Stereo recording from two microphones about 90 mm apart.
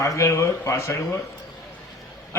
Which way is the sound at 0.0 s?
35° left (ahead or behind).